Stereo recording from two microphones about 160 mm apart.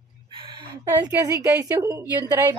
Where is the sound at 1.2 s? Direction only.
20° right (ahead or behind).